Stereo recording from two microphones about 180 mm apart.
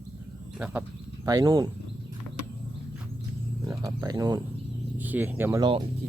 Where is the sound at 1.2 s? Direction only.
20° right (ahead or behind).